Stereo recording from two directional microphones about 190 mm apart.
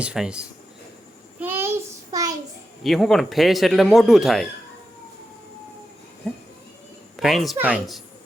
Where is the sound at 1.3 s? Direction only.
10° right (ahead or behind).